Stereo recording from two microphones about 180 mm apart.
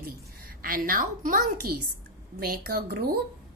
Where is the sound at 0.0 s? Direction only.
55° right (ahead or behind).